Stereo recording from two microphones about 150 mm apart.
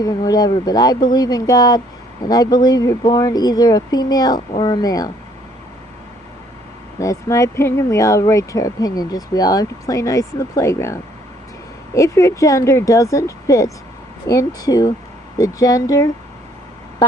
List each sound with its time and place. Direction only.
0.0 s speech: 25° left (ahead or behind)
7.0 s speech: 20° left (ahead or behind)